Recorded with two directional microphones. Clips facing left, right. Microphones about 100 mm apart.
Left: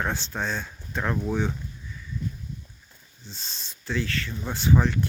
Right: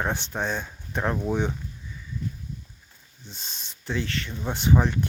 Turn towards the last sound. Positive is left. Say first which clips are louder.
# even
turn(degrees=-20)  # may be behind; listen again after turning